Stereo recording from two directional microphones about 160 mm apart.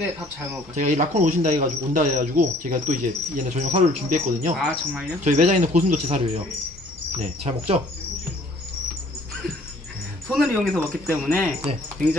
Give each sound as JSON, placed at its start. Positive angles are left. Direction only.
{"t": 0.7, "sound": "speech", "side_deg": -50}
{"t": 10.2, "sound": "speech", "side_deg": -5}
{"t": 10.8, "sound": "speech", "side_deg": 15}